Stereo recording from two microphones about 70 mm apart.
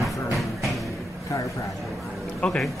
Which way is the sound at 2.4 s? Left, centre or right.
Centre.